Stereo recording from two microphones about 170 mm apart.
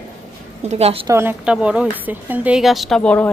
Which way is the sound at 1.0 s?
15° right (ahead or behind).